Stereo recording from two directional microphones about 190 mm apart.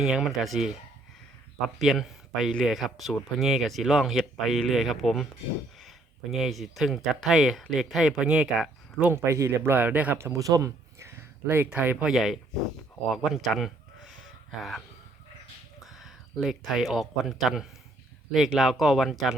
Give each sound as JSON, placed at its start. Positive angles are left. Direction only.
{"t": 0.0, "sound": "speech", "side_deg": -5}
{"t": 1.8, "sound": "speech", "side_deg": 0}
{"t": 6.3, "sound": "speech", "side_deg": 0}
{"t": 13.3, "sound": "a sound", "side_deg": 0}
{"t": 15.9, "sound": "speech", "side_deg": 0}